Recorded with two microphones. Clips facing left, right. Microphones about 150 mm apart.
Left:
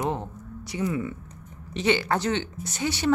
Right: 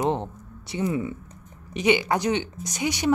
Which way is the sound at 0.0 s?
25° right (ahead or behind).